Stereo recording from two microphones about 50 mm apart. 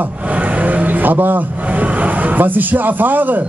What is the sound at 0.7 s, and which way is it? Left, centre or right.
A man's voice, right.